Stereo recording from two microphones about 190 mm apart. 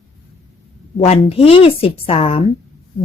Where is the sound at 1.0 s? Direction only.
30° left (ahead or behind).